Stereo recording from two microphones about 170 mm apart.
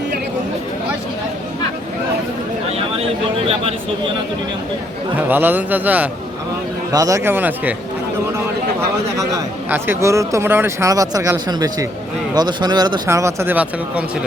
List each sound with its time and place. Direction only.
3.4 s a man's voice: 35° right (ahead or behind)
5.1 s speech: 10° right (ahead or behind)
9.6 s speech: 10° right (ahead or behind)